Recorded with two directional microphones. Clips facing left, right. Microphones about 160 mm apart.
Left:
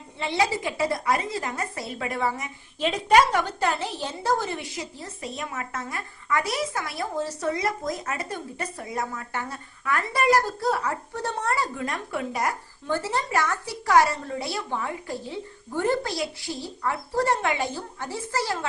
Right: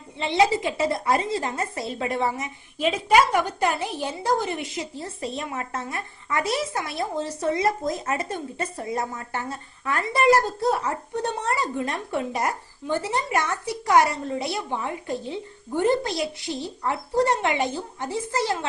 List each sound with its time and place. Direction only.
0.2 s a woman's voice: 20° right (ahead or behind)
2.7 s a woman's voice: 10° right (ahead or behind)